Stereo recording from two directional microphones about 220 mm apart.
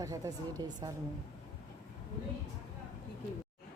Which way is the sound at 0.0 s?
15° right (ahead or behind).